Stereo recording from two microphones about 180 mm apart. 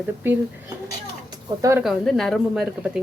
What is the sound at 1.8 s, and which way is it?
A woman's voice, centre (ahead or behind).